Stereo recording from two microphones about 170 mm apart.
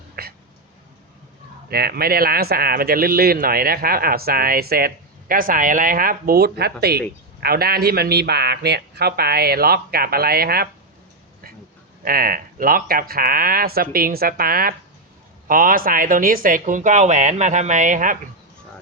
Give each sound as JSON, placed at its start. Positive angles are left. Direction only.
{"t": 0.2, "sound": "a sound", "side_deg": -65}
{"t": 1.7, "sound": "speech", "side_deg": -65}
{"t": 12.0, "sound": "speech", "side_deg": -60}